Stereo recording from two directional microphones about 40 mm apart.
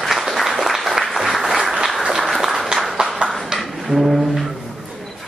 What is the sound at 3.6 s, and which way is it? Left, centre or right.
Brass instrument, centre.